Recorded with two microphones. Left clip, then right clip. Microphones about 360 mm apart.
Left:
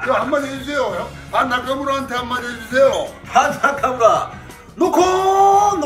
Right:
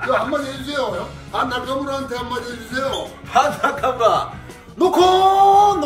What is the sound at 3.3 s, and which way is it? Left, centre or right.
Speech, centre.